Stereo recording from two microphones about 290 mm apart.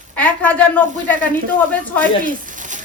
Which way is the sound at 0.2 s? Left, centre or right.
Centre.